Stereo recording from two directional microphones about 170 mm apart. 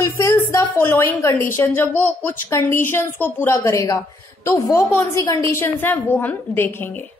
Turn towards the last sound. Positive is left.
turn(degrees=10)  # may be behind; listen again after turning